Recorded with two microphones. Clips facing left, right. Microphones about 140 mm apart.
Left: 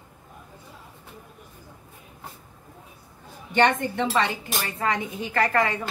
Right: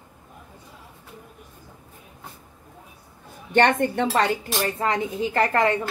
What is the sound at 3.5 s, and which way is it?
Speech, 50° right (ahead or behind).